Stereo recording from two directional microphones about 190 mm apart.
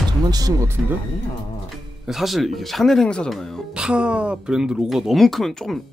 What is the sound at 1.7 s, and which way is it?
Speech, centre (ahead or behind).